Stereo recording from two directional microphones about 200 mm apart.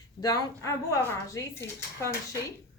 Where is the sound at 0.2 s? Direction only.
15° left (ahead or behind).